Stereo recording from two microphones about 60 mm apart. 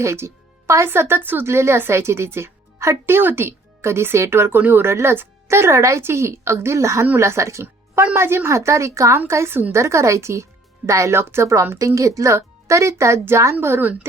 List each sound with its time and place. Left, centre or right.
0.0 s a woman's voice: right
1.5 s a woman's voice: right
4.9 s a woman's voice: right
8.1 s a woman's voice: right
11.8 s speech: right